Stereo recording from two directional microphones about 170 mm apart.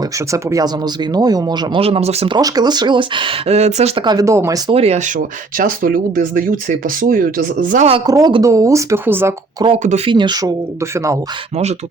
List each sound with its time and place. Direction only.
0.3 s speech: 20° right (ahead or behind); by 4.0 s 40° right (ahead or behind)
4.0 s speech: 25° right (ahead or behind)
4.7 s speech: 35° right (ahead or behind); by 7.9 s 50° right (ahead or behind)
8.0 s speech: 20° right (ahead or behind)
10.1 s speech: 25° right (ahead or behind)